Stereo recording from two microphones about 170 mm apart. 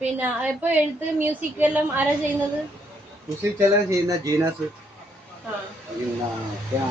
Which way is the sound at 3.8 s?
20° right (ahead or behind).